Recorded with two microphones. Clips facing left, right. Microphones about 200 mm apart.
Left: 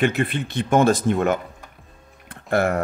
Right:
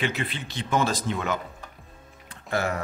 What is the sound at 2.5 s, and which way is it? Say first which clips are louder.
Speech: left 7 dB; 55° left (ahead or behind).